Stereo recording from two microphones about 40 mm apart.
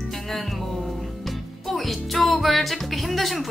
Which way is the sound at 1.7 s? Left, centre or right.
Centre.